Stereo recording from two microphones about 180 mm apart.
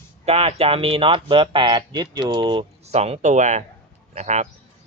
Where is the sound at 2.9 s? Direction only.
35° right (ahead or behind).